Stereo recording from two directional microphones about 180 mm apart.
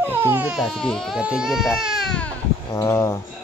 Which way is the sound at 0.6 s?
5° left (ahead or behind).